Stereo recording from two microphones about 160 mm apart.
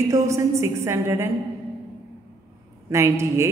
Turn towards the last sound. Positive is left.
turn(degrees=-20)  # may be behind; listen again after turning